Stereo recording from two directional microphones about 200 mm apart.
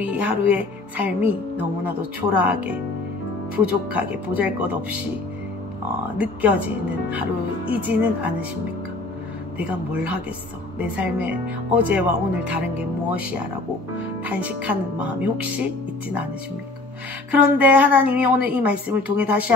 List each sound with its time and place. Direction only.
0.0 s speech: 10° right (ahead or behind)
6.1 s speech: 5° right (ahead or behind)
7.7 s speech: 10° right (ahead or behind)
9.6 s speech: 5° right (ahead or behind)
17.3 s speech: 5° right (ahead or behind)